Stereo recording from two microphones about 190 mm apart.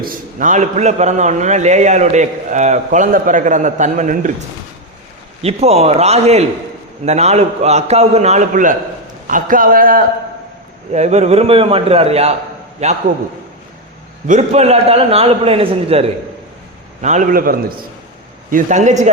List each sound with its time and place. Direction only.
0.0 s a man's voice: 45° right (ahead or behind)
5.4 s a man's voice: 30° right (ahead or behind); by 10.1 s 50° right (ahead or behind)
10.9 s a man's voice: 35° right (ahead or behind)
14.3 s a man's voice: 40° right (ahead or behind)